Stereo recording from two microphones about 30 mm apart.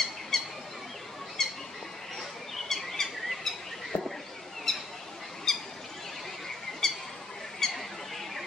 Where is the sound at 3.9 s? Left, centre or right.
Left.